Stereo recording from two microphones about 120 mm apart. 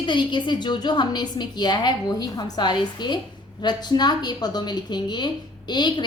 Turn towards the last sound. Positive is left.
turn(degrees=40)  # may be behind; listen again after turning